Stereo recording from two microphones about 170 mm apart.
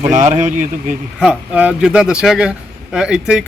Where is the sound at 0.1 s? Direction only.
45° right (ahead or behind).